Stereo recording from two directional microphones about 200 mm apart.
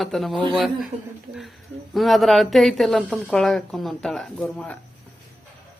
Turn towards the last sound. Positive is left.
turn(degrees=5)  # may be behind; listen again after turning